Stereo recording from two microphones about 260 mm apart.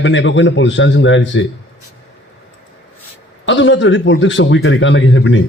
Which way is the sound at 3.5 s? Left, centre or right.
Left.